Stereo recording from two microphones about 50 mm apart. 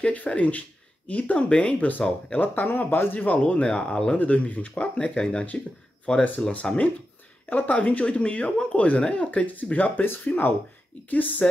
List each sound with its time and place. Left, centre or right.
0.0 s speech: left
1.8 s speech: left
2.0 s speech: left
2.4 s speech: left
3.6 s speech: centre
4.2 s speech: left; by 6.8 s centre
7.4 s speech: left